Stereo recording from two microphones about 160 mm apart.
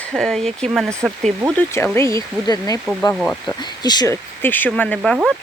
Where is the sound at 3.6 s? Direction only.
25° left (ahead or behind).